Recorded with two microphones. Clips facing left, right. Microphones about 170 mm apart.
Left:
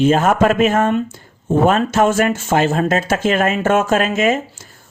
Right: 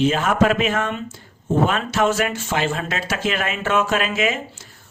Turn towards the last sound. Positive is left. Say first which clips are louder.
# left 6 dB
turn(degrees=45)  # may be behind; listen again after turning